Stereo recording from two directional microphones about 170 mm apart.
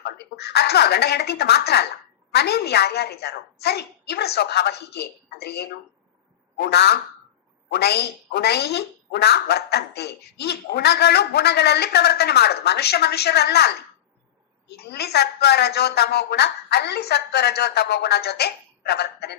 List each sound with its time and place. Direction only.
0.0 s a woman's voice: 75° left (ahead or behind)
14.9 s a woman's voice: 70° left (ahead or behind)